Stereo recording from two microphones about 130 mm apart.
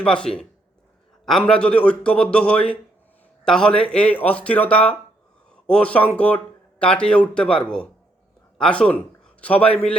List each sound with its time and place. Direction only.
0.0 s a man's voice: 5° left (ahead or behind)